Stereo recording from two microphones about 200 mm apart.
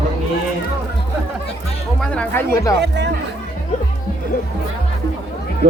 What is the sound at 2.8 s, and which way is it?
Speech, 60° right (ahead or behind).